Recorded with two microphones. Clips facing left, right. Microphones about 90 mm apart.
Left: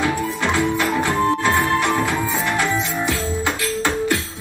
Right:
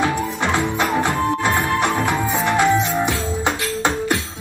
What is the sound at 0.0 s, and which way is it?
Music, 20° right (ahead or behind).